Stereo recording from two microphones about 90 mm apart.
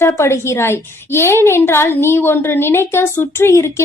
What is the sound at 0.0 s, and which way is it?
A woman's voice, 30° left (ahead or behind).